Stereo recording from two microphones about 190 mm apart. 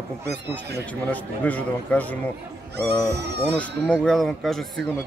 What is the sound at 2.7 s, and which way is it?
Speech, 60° right (ahead or behind).